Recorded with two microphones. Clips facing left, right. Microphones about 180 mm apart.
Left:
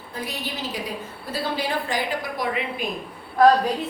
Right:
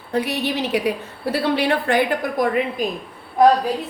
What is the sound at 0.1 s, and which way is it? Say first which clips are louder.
A woman's voice: right 10 dB; 70° right (ahead or behind).